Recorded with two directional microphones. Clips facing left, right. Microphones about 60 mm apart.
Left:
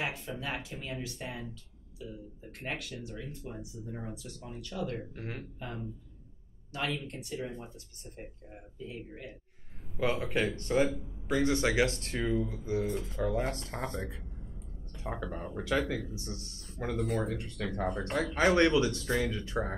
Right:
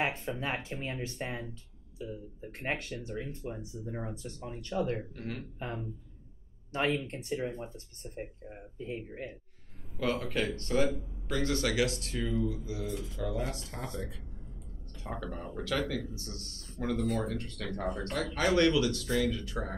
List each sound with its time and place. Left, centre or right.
0.3 s speech: right
5.1 s speech: left
5.6 s speech: right
9.9 s speech: centre; by 14.2 s left
15.1 s speech: centre
17.0 s speech: centre
18.0 s speech: left